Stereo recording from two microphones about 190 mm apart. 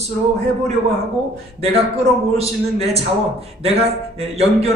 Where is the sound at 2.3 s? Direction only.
35° right (ahead or behind).